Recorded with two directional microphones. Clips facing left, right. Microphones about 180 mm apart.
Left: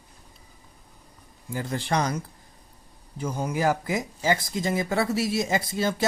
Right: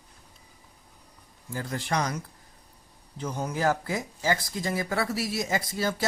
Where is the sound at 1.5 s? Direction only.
30° left (ahead or behind).